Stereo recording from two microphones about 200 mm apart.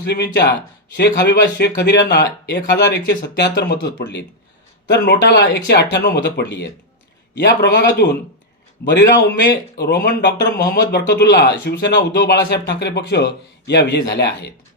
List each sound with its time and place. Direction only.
0.0 s a man's voice: 55° left (ahead or behind)